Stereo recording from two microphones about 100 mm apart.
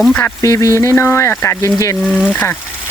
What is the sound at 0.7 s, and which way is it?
Speech, 25° left (ahead or behind).